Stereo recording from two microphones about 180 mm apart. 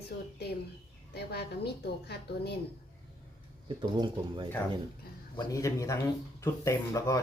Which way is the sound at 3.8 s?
25° right (ahead or behind).